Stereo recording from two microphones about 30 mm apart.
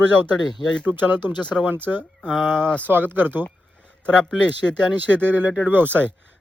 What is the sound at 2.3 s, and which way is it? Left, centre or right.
Speech, centre.